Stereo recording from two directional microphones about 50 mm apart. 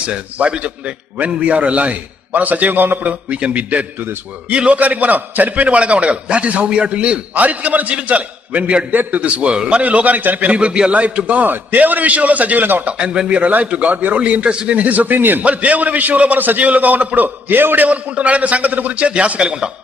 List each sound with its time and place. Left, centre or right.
0.3 s a man's voice: right
12.9 s a man's voice: right
17.8 s a man's voice: right